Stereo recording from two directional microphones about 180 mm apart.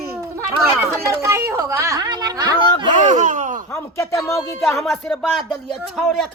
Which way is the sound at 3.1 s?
45° right (ahead or behind).